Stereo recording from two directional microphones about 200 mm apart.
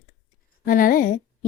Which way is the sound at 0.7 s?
45° left (ahead or behind).